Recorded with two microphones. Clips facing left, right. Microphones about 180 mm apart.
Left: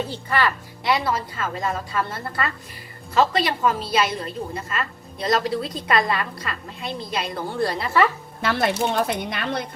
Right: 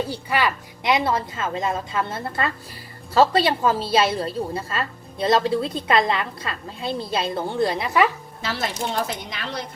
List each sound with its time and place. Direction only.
0.0 s a woman's voice: 15° right (ahead or behind)
8.4 s speech: 60° left (ahead or behind)